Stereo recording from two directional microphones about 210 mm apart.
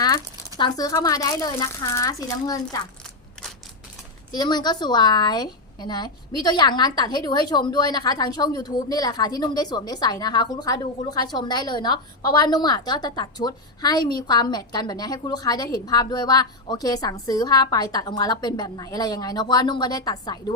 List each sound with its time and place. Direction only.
0.0 s speech: 20° left (ahead or behind)
4.3 s a woman's voice: 20° left (ahead or behind)